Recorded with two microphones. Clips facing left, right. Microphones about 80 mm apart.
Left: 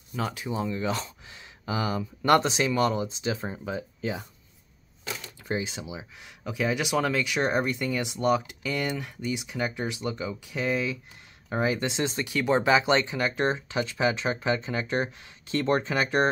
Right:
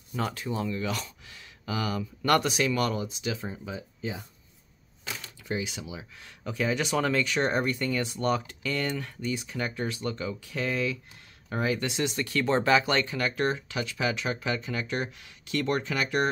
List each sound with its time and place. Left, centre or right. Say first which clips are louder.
0.3 s speech: left 1 dB; centre; by 3.3 s left
3.3 s speech: left 4 dB; left
5.4 s speech: left 2 dB; left
12.3 s speech: left 1 dB; centre; by 16.3 s left